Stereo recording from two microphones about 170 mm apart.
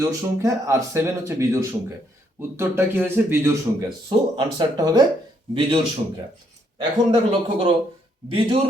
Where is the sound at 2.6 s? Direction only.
15° right (ahead or behind).